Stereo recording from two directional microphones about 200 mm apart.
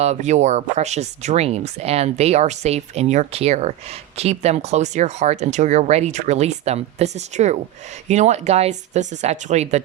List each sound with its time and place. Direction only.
0.0 s speech: 35° right (ahead or behind)